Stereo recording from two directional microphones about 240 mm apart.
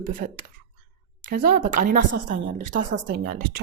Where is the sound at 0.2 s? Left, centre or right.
Right.